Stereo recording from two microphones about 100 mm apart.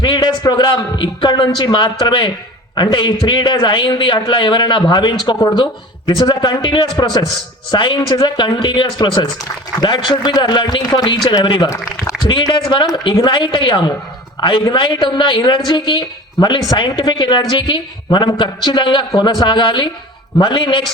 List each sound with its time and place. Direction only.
0.0 s speech: 50° left (ahead or behind)